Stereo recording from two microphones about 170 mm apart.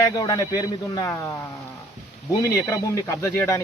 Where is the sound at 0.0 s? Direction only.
20° left (ahead or behind).